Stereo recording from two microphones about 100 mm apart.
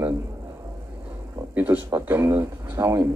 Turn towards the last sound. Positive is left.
turn(degrees=-25)  # may be behind; listen again after turning